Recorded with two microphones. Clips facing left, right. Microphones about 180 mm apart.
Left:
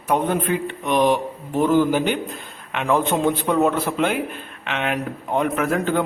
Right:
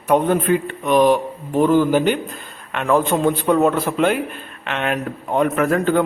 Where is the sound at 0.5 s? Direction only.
5° left (ahead or behind).